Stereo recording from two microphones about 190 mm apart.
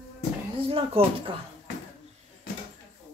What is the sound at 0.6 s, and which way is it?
Speech, 30° right (ahead or behind).